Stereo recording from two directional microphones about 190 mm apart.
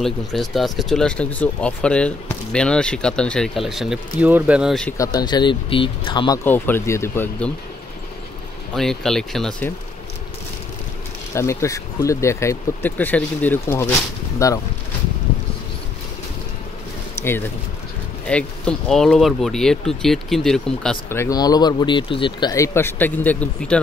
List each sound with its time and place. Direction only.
0.0 s speech: centre (ahead or behind)
4.9 s speech: 20° left (ahead or behind)
6.4 s speech: 10° left (ahead or behind)
8.7 s speech: centre (ahead or behind)
11.3 s speech: 15° left (ahead or behind)
17.1 s a sound: 10° left (ahead or behind)
18.2 s speech: 5° left (ahead or behind)